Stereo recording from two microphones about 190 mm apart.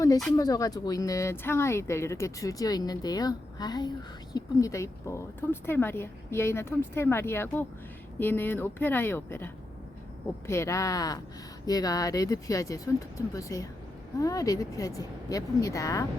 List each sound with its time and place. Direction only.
0.3 s speech: 20° left (ahead or behind)